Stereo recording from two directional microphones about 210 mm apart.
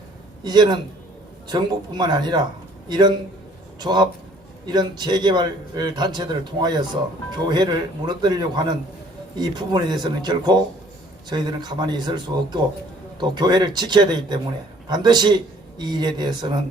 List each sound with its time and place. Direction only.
0.4 s a man's voice: 20° right (ahead or behind)
3.8 s a man's voice: 20° right (ahead or behind)